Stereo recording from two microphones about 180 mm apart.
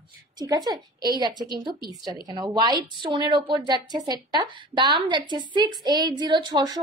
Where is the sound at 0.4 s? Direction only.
20° right (ahead or behind).